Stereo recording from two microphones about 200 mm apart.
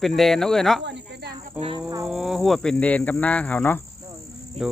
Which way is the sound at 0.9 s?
60° right (ahead or behind).